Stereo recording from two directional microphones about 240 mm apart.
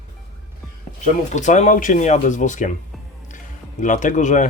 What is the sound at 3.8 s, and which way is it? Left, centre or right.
Speech, left.